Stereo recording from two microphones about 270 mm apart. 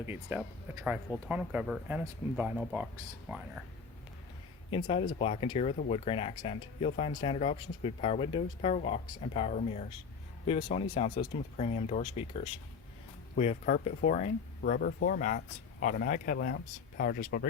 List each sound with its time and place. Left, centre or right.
0.0 s speech: centre
4.7 s speech: centre